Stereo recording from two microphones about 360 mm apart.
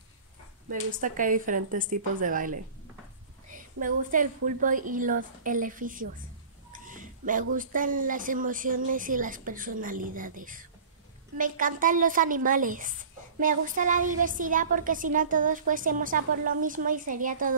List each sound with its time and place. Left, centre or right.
0.7 s a woman's voice: right
3.5 s a woman's voice: right